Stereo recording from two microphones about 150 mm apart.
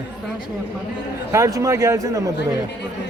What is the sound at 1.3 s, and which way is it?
Speech, 20° right (ahead or behind).